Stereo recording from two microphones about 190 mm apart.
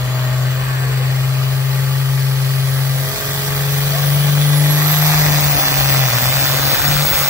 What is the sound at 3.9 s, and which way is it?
Vehicle, 15° right (ahead or behind).